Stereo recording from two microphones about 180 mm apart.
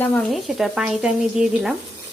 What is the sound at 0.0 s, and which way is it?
Speech, 5° left (ahead or behind).